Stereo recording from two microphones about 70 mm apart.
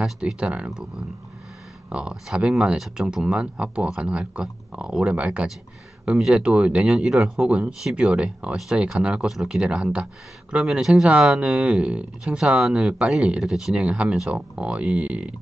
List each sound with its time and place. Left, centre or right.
0.0 s speech: centre
1.9 s speech: centre
6.1 s speech: centre
6.4 s speech: centre